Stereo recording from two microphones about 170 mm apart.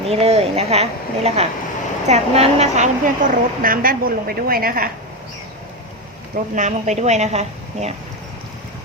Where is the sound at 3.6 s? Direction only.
55° right (ahead or behind).